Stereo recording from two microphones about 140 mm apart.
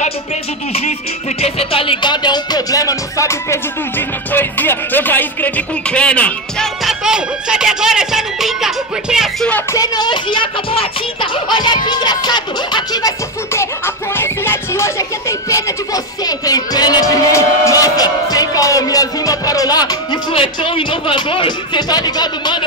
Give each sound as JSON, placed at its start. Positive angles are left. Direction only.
{"t": 1.4, "sound": "music", "side_deg": 45}
{"t": 9.8, "sound": "speech", "side_deg": 30}